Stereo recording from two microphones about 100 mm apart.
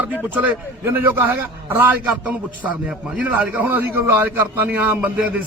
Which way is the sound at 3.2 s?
15° right (ahead or behind).